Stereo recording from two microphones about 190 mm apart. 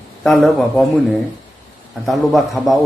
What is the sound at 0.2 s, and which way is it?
A man's voice, centre (ahead or behind).